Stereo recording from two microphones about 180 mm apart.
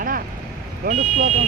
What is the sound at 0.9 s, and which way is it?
Speech, 55° right (ahead or behind).